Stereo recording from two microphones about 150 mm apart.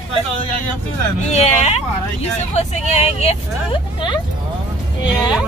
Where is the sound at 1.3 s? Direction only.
45° left (ahead or behind).